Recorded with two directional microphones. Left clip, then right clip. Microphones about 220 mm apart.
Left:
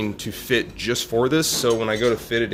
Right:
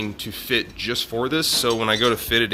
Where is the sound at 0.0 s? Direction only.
Centre (ahead or behind).